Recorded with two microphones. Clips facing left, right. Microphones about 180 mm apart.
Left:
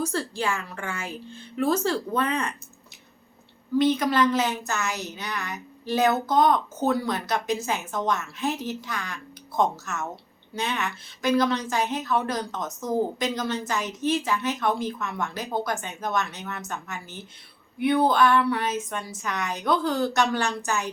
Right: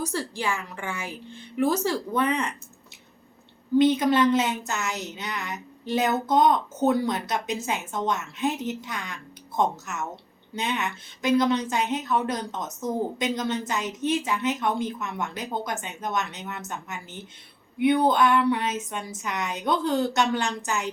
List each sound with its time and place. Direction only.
0.0 s speech: 15° right (ahead or behind)
3.9 s a woman's voice: 25° right (ahead or behind)